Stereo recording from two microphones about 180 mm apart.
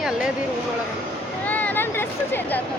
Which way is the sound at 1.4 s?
10° left (ahead or behind).